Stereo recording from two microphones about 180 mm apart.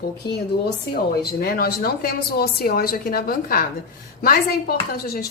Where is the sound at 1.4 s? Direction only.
55° left (ahead or behind).